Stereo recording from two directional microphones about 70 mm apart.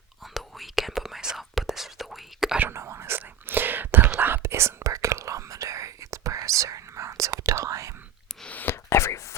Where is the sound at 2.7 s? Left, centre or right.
Right.